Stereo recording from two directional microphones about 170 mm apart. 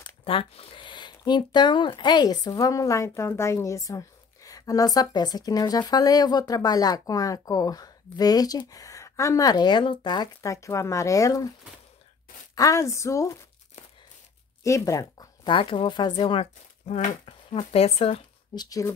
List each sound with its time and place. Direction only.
0.2 s speech: 35° left (ahead or behind)
12.5 s speech: 20° left (ahead or behind)
14.6 s speech: 20° left (ahead or behind); by 18.6 s 35° left (ahead or behind)
18.6 s speech: 20° left (ahead or behind)